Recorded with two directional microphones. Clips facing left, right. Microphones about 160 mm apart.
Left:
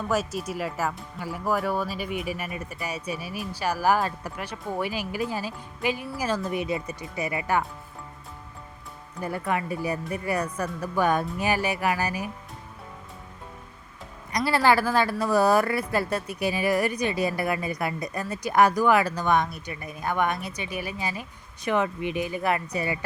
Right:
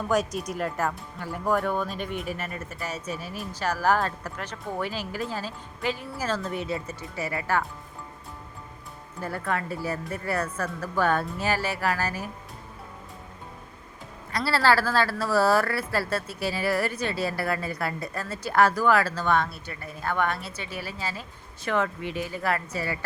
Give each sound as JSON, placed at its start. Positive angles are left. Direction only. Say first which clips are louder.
{"t": 0.1, "sound": "speech", "louder": "right 2 dB", "side_deg": 5}
{"t": 9.2, "sound": "speech", "louder": "left 2 dB", "side_deg": 15}
{"t": 14.3, "sound": "speech", "louder": "left 1 dB", "side_deg": 15}